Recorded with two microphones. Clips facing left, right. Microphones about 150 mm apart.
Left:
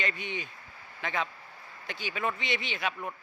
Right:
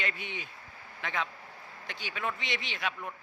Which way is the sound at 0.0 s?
Centre (ahead or behind).